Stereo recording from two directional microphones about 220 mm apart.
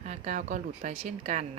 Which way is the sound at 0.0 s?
35° right (ahead or behind).